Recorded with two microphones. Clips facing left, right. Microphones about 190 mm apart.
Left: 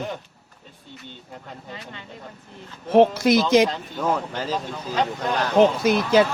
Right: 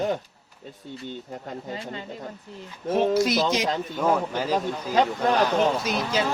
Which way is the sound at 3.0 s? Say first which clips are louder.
Left 5 dB; 55° left (ahead or behind).